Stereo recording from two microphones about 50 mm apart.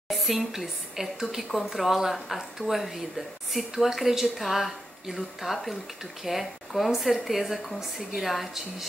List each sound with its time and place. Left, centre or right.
0.1 s a woman's voice: centre